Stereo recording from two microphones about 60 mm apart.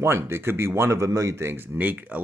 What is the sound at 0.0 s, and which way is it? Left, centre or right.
Speech, right.